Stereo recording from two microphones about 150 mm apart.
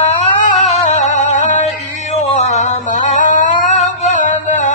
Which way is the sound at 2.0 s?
50° left (ahead or behind).